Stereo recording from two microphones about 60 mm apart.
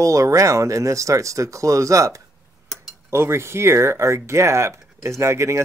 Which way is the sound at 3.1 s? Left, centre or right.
Right.